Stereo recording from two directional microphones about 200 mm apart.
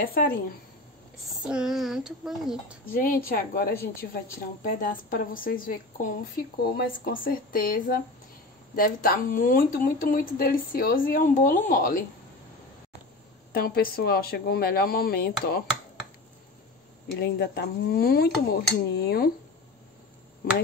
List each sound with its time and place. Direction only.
0.0 s a woman's voice: 50° left (ahead or behind)
1.4 s a child's voice: 5° right (ahead or behind)
2.9 s a woman's voice: 45° left (ahead or behind)
13.5 s a woman's voice: 50° left (ahead or behind)
17.2 s a woman's voice: 55° left (ahead or behind)